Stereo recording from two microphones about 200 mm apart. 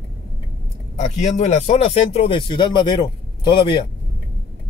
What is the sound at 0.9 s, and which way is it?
A man's voice, 35° left (ahead or behind).